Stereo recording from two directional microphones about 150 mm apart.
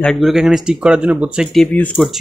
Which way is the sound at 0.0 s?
Centre (ahead or behind).